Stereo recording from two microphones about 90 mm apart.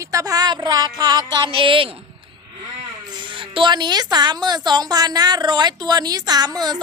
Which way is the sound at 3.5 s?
60° right (ahead or behind).